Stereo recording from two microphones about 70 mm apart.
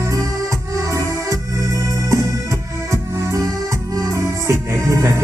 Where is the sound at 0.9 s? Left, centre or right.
Right.